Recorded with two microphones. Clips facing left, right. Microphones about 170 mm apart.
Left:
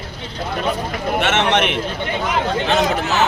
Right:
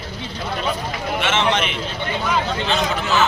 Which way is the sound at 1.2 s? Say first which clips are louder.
Left 3 dB; 65° left (ahead or behind).